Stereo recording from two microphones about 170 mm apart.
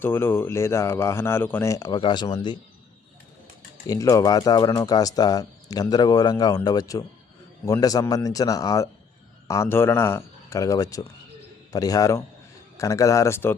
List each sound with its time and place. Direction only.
0.0 s speech: 10° left (ahead or behind)
3.8 s speech: 20° left (ahead or behind)